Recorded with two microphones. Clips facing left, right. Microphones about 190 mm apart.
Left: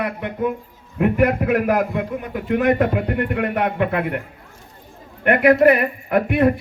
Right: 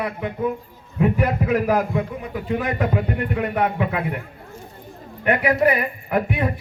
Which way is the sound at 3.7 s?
60° left (ahead or behind).